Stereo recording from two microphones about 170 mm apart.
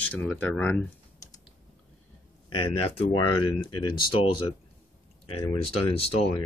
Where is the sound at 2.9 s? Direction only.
30° left (ahead or behind).